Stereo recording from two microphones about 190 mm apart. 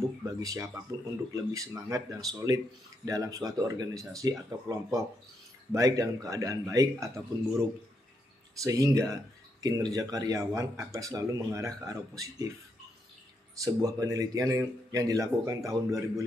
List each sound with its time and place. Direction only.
0.2 s speech: 15° right (ahead or behind)
8.6 s speech: 15° right (ahead or behind)
13.6 s speech: 15° right (ahead or behind)